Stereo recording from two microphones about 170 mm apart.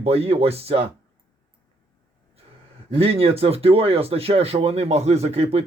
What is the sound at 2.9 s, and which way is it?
Speech, 35° right (ahead or behind).